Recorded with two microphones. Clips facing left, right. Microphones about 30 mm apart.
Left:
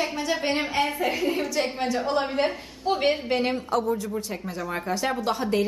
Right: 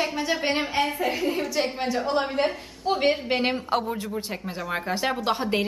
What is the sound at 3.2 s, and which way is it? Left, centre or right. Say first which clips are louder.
Speech: even; centre.